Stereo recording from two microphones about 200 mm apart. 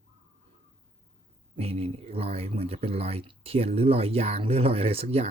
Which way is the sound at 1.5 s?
30° right (ahead or behind).